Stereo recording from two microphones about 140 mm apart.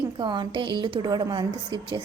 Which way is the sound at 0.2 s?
30° right (ahead or behind).